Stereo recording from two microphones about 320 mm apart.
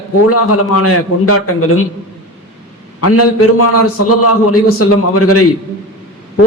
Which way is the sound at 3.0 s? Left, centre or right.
Left.